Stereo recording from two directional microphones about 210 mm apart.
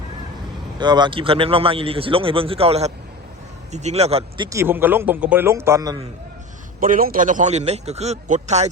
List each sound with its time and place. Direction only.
0.8 s a man's voice: 20° right (ahead or behind)
4.4 s a man's voice: 10° right (ahead or behind)
6.7 s a man's voice: 40° right (ahead or behind)